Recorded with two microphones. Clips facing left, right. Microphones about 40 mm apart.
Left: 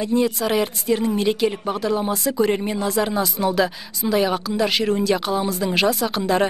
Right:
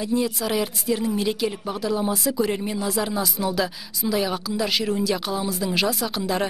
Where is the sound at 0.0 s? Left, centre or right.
Centre.